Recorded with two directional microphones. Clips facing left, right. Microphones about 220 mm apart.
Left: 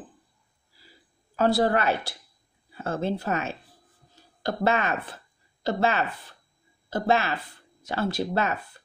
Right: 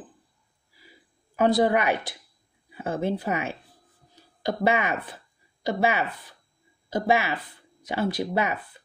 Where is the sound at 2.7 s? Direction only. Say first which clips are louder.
Right 1 dB; 15° right (ahead or behind).